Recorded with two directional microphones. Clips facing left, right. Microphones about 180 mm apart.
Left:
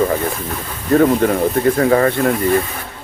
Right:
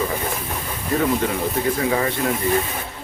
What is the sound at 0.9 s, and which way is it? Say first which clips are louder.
Speech: left 8 dB; 55° left (ahead or behind).